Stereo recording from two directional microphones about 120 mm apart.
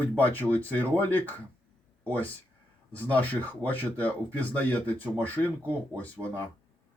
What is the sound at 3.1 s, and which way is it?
Speech, 15° left (ahead or behind).